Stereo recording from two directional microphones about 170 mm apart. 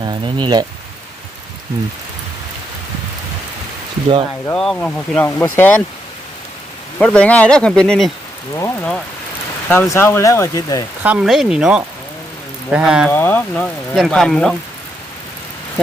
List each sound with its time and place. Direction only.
0.0 s speech: 25° right (ahead or behind)
4.5 s speech: 5° left (ahead or behind)
7.0 s speech: 5° left (ahead or behind)
8.5 s speech: 15° left (ahead or behind)
11.0 s speech: 5° right (ahead or behind)
13.1 s speech: 10° left (ahead or behind)